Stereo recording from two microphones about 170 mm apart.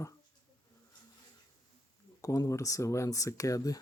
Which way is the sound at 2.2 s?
20° left (ahead or behind).